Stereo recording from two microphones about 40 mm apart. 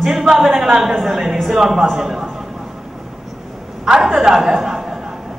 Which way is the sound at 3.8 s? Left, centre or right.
Centre.